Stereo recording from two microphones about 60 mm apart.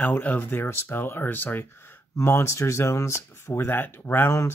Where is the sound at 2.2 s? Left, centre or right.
Left.